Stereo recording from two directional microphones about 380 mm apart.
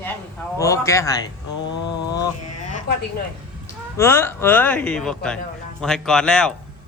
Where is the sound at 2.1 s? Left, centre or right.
Centre.